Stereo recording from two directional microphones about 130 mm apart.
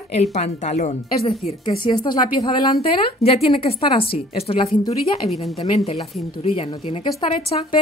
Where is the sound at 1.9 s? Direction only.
35° left (ahead or behind).